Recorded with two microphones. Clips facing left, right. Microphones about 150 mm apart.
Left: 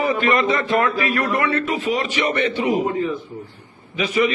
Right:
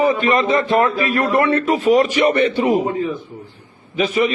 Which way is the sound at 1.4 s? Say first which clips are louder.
Right 5 dB; 45° right (ahead or behind).